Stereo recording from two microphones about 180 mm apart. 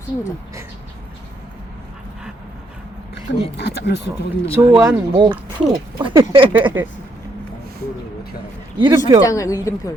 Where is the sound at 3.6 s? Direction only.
70° left (ahead or behind).